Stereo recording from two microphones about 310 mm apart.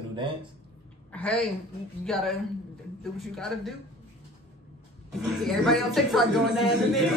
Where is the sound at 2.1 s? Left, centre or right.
Centre.